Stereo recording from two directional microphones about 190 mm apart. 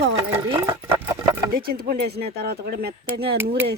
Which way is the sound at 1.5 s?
50° right (ahead or behind).